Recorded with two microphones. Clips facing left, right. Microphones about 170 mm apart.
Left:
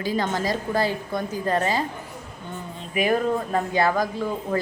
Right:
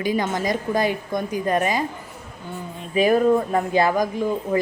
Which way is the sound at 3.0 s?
30° right (ahead or behind).